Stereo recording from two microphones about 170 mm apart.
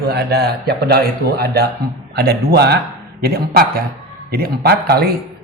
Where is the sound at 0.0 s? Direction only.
70° right (ahead or behind).